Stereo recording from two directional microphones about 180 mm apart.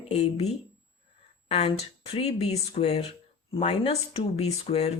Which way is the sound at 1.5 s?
35° left (ahead or behind).